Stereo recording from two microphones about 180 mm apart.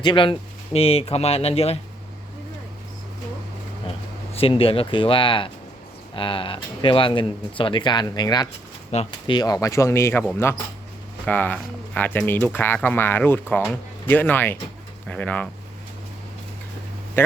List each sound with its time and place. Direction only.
0.0 s speech: 25° left (ahead or behind)
4.4 s speech: 30° left (ahead or behind); by 15.4 s 5° left (ahead or behind)
17.2 s speech: 15° left (ahead or behind)